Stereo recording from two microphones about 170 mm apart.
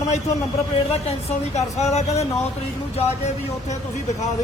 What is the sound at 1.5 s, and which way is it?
Speech, 40° left (ahead or behind).